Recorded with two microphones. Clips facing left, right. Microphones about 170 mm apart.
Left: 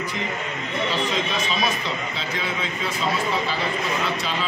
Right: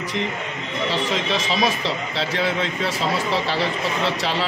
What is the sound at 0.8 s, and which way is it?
A man's voice, 80° right.